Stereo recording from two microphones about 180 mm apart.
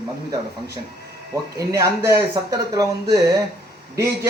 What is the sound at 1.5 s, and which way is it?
Speech, 20° right (ahead or behind).